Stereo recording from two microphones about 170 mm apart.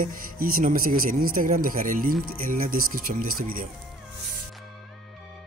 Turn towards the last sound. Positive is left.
turn(degrees=-55)  # may be behind; listen again after turning